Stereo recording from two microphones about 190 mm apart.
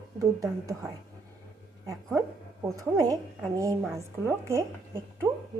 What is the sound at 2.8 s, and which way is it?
A woman's voice, 15° right (ahead or behind).